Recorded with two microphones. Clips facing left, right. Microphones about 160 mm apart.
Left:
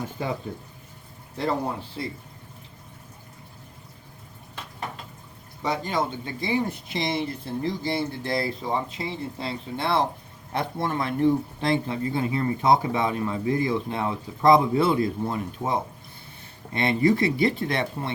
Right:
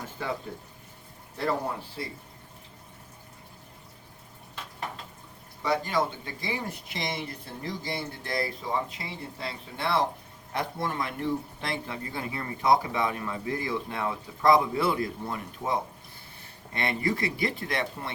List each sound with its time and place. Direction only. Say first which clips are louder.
0.2 s speech: left 3 dB; 15° left (ahead or behind)
5.6 s speech: left 1 dB; 20° left (ahead or behind)